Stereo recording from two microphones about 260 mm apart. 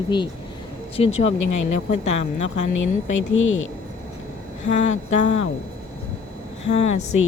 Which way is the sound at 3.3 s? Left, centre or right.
Left.